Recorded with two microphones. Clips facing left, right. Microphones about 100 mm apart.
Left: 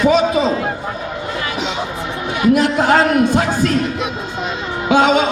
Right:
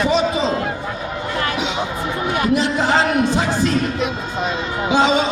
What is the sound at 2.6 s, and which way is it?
Music, 55° left (ahead or behind).